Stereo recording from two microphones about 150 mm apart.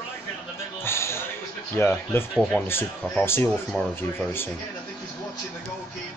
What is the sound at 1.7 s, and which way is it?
A man's voice, 15° left (ahead or behind).